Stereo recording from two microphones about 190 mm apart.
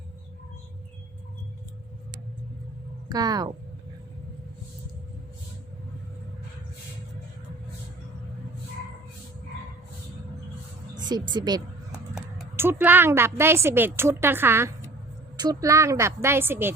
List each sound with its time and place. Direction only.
3.1 s speech: 20° right (ahead or behind)
10.9 s speech: 20° right (ahead or behind)
11.9 s speech: 10° right (ahead or behind)